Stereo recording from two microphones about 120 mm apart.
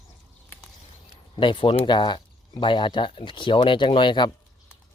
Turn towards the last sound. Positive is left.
turn(degrees=40)  # may be behind; listen again after turning